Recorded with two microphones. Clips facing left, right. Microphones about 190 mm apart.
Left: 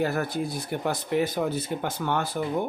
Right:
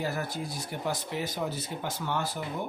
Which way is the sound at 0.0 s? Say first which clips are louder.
Left 6 dB; 60° left (ahead or behind).